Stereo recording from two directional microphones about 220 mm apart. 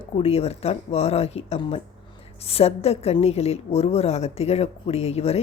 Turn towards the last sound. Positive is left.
turn(degrees=30)  # may be behind; listen again after turning